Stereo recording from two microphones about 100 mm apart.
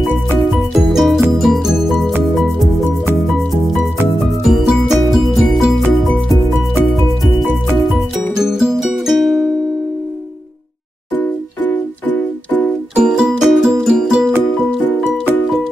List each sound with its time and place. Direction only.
0.7 s music: centre (ahead or behind)
11.7 s music: 15° left (ahead or behind)
12.9 s music: 10° right (ahead or behind)